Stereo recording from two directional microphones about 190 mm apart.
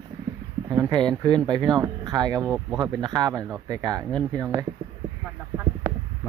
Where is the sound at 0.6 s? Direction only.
20° right (ahead or behind).